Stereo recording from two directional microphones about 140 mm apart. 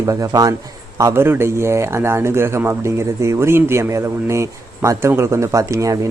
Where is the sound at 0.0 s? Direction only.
25° right (ahead or behind).